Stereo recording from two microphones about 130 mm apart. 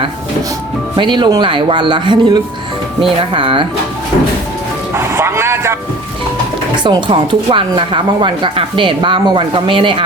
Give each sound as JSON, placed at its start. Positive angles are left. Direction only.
{"t": 0.9, "sound": "a woman's voice", "side_deg": -35}
{"t": 4.9, "sound": "speech", "side_deg": -20}
{"t": 6.8, "sound": "a woman's voice", "side_deg": -40}